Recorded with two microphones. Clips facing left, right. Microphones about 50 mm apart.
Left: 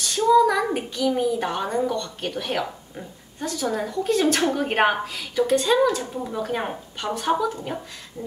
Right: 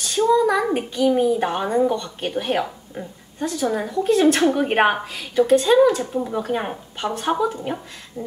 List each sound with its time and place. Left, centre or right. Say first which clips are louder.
0.4 s a child's voice: even; centre; by 2.6 s right
2.9 s a woman's voice: right 5 dB; centre